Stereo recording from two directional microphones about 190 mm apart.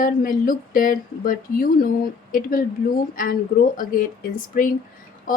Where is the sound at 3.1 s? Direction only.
45° left (ahead or behind).